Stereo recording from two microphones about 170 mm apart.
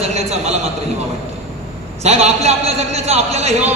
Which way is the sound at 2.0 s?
40° right (ahead or behind).